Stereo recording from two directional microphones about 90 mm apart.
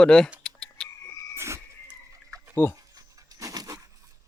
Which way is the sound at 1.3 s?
30° right (ahead or behind).